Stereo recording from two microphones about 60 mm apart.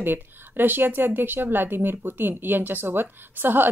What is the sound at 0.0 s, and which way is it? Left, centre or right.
Speech, right.